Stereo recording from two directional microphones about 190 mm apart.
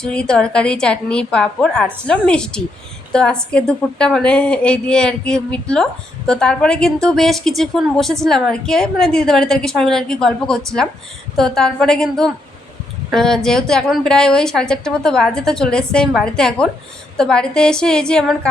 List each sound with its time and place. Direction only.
0.0 s a woman's voice: 5° left (ahead or behind)